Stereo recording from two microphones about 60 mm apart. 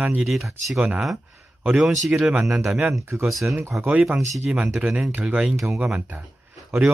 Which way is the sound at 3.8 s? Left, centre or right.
Right.